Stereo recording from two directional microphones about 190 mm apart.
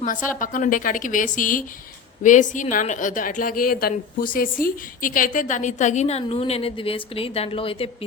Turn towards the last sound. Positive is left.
turn(degrees=30)  # may be behind; listen again after turning